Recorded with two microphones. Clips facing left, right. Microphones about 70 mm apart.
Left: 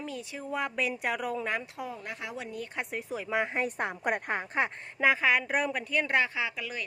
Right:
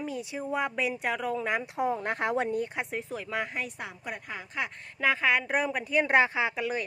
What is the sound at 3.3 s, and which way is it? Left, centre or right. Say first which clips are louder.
Speech: left 4 dB; left.